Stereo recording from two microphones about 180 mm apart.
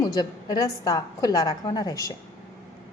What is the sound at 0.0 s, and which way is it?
A woman's voice, 20° left (ahead or behind).